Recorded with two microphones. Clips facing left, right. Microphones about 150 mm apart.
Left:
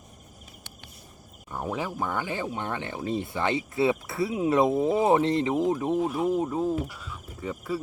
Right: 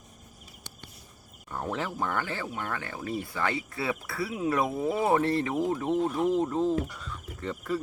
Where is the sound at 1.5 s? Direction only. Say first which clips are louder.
Left 1 dB; 10° left (ahead or behind).